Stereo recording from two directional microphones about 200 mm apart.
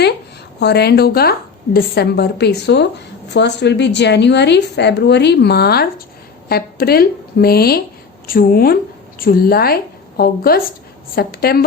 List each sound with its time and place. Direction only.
0.6 s a woman's voice: 55° left (ahead or behind)